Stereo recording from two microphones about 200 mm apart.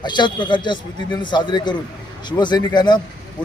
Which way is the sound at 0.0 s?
20° left (ahead or behind).